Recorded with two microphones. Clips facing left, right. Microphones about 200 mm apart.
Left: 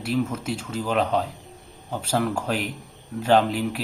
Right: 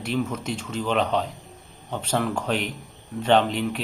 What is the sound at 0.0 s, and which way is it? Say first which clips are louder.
Speech: left 1 dB; 5° left (ahead or behind).